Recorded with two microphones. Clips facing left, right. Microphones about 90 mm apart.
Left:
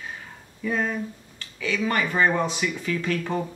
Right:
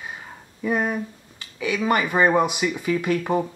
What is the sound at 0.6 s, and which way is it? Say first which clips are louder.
Speech: right 3 dB; 15° right (ahead or behind).